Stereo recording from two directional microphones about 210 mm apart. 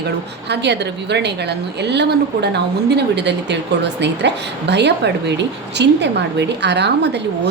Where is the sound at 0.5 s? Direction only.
55° right (ahead or behind).